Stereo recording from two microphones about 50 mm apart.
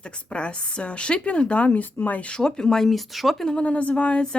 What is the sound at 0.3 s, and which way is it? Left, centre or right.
Speech, left.